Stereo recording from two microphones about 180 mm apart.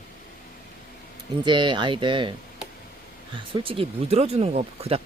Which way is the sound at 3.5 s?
30° right (ahead or behind).